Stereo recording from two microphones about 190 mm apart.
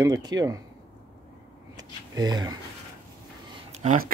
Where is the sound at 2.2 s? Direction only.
20° right (ahead or behind).